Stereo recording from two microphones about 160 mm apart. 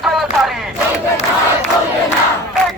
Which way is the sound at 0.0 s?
Centre (ahead or behind).